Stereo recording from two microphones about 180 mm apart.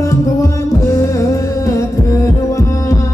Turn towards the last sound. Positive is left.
turn(degrees=15)  # may be behind; listen again after turning